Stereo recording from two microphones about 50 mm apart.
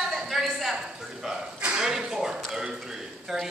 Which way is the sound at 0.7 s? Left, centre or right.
Centre.